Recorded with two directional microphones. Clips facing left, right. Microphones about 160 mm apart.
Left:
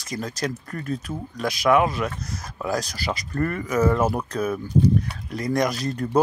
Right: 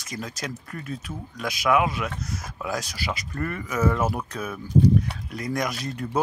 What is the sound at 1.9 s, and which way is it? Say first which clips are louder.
Speech: left 3 dB; 5° right (ahead or behind).